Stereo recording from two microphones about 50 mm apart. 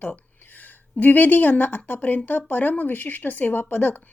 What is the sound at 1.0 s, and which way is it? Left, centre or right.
A woman's voice, left.